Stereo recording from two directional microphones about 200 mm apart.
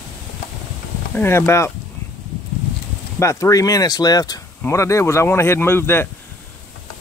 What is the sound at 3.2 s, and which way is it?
Speech, 15° left (ahead or behind).